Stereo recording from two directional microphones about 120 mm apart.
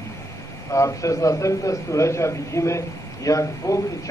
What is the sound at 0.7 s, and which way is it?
A man's voice, 25° left (ahead or behind).